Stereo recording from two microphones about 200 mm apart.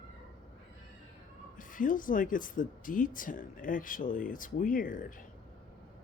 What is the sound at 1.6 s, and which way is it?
Speech, 40° left (ahead or behind).